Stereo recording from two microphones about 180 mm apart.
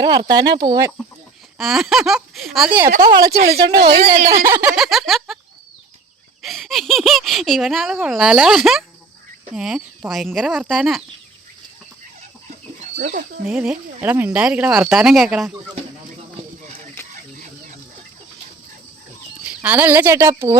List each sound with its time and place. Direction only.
0.0 s speech: 25° right (ahead or behind)
1.5 s speech: centre (ahead or behind)
3.0 s speech: 20° right (ahead or behind)
3.3 s speech: 60° right (ahead or behind)
4.4 s speech: 10° right (ahead or behind)
4.7 s speech: centre (ahead or behind)
6.4 s speech: centre (ahead or behind)
13.4 s speech: 5° right (ahead or behind)
19.5 s speech: 10° right (ahead or behind)